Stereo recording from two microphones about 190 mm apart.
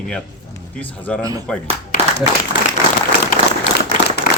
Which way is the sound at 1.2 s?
20° right (ahead or behind).